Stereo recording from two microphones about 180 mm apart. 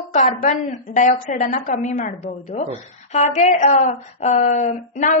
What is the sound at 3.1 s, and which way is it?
A woman's voice, 40° left (ahead or behind).